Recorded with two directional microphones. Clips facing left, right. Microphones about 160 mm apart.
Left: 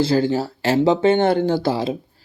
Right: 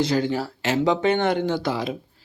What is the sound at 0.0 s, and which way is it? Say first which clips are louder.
Speech: left 4 dB; 30° left (ahead or behind).